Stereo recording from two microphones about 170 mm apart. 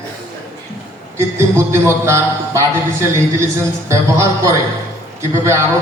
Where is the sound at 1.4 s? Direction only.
15° right (ahead or behind).